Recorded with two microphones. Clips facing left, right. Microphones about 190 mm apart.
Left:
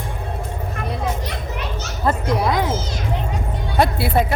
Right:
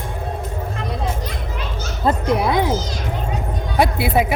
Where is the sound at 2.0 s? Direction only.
25° right (ahead or behind).